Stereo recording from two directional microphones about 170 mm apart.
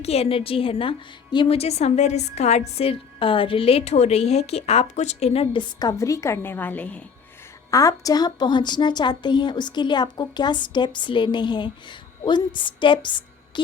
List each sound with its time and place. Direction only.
0.0 s a woman's voice: 35° left (ahead or behind); by 7.0 s 10° left (ahead or behind)
7.7 s a woman's voice: 20° left (ahead or behind)